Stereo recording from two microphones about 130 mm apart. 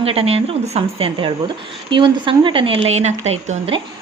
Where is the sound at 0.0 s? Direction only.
50° right (ahead or behind); by 3.6 s 65° right (ahead or behind).